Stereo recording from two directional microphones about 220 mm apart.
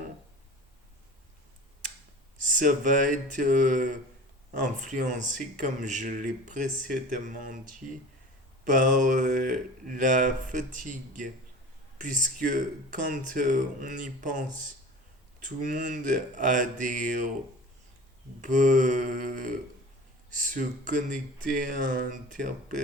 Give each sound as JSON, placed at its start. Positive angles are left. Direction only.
{"t": 2.6, "sound": "a man's voice", "side_deg": -35}
{"t": 18.4, "sound": "a man's voice", "side_deg": -35}